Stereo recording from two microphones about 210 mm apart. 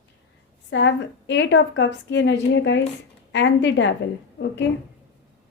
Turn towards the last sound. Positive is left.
turn(degrees=55)  # may be behind; listen again after turning